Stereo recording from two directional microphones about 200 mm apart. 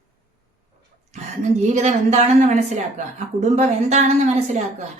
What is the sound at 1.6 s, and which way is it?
A woman's voice, 35° right (ahead or behind).